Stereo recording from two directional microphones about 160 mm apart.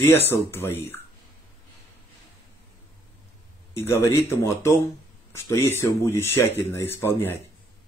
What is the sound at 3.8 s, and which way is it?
Speech, 15° left (ahead or behind).